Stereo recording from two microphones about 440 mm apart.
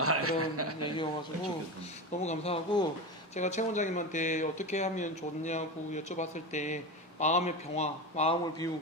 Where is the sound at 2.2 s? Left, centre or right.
Centre.